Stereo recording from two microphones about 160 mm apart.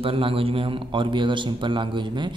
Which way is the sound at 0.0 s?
35° right (ahead or behind).